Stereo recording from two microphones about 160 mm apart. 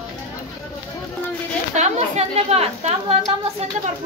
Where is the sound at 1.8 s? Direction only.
45° right (ahead or behind).